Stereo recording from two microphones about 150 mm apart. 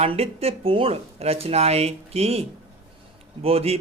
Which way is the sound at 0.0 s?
40° right (ahead or behind).